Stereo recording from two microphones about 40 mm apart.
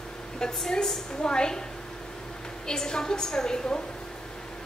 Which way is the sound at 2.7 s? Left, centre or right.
Centre.